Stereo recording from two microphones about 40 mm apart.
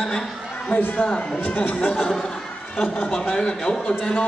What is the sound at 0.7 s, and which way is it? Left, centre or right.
A man's voice, left.